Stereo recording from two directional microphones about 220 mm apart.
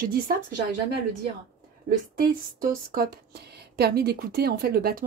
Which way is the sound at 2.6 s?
40° right (ahead or behind).